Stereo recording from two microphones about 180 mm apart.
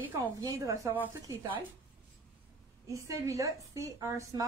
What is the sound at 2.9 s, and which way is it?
A woman's voice, 15° right (ahead or behind).